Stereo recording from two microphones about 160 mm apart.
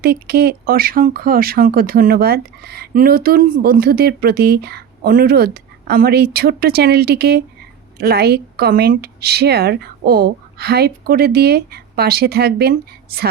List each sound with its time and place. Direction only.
0.0 s speech: 80° right